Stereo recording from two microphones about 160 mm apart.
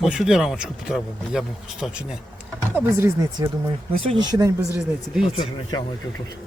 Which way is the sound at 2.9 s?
15° right (ahead or behind).